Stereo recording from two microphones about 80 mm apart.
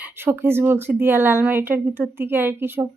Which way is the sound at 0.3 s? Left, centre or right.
Right.